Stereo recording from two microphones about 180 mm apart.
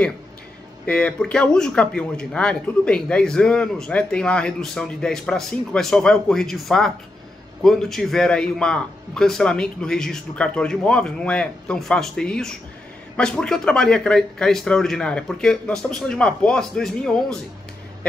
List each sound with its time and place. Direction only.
0.8 s speech: 5° left (ahead or behind)